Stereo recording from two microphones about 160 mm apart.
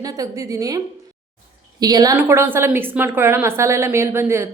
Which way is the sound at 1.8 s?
25° right (ahead or behind).